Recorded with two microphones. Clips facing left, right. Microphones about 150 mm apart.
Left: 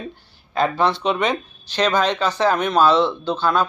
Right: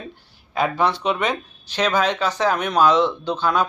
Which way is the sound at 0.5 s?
10° right (ahead or behind).